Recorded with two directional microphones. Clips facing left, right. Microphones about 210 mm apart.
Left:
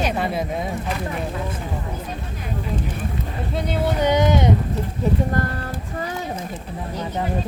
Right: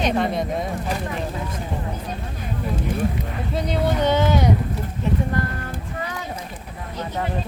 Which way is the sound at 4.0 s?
15° left (ahead or behind).